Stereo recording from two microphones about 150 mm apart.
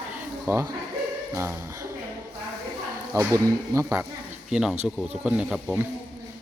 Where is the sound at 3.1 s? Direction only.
20° right (ahead or behind).